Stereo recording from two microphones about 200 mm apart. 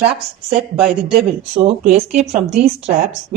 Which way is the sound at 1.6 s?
30° right (ahead or behind).